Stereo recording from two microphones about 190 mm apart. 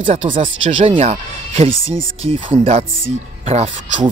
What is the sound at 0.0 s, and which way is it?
Speech, 30° right (ahead or behind).